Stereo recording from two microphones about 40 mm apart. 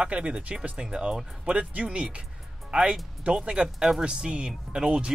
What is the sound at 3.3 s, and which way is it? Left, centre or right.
Speech, right.